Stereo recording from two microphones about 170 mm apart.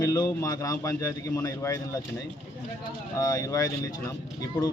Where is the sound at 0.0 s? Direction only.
20° left (ahead or behind).